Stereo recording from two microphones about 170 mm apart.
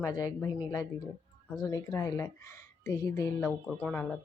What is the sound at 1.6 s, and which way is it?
A woman's voice, 20° left (ahead or behind).